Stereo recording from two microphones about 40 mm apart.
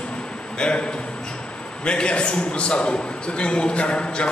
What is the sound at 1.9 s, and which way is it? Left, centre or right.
A man's voice, left.